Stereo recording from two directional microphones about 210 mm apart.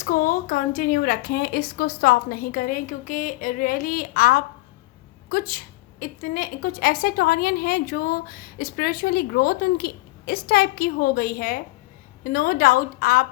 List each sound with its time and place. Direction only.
0.0 s a woman's voice: 40° left (ahead or behind)